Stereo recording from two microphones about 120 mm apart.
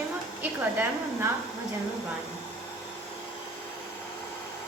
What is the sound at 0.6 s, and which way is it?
Speech, 20° right (ahead or behind).